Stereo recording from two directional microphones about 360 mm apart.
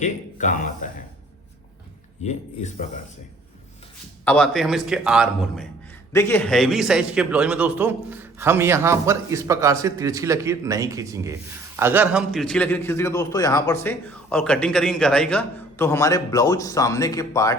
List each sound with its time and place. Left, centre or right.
0.0 s a sound: left
2.2 s speech: centre
4.3 s a man's voice: centre